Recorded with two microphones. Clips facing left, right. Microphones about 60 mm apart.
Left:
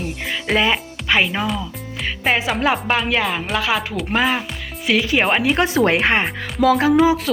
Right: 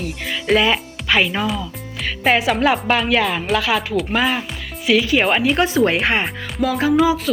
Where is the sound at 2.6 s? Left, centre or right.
Centre.